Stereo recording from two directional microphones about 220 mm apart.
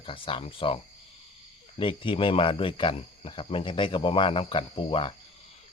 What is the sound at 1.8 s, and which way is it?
Speech, 20° left (ahead or behind).